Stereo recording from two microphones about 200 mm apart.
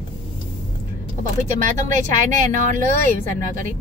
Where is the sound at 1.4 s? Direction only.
40° right (ahead or behind).